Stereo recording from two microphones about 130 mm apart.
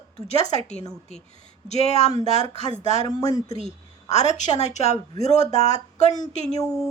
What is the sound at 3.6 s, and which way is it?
A woman's voice, 60° left (ahead or behind).